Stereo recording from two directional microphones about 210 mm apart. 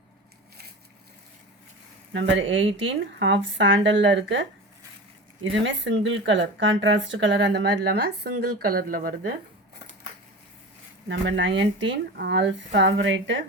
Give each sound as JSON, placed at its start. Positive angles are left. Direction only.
{"t": 2.1, "sound": "speech", "side_deg": -60}
{"t": 11.1, "sound": "speech", "side_deg": -60}